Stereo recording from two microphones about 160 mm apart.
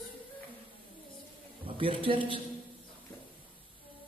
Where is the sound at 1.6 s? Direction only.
35° right (ahead or behind).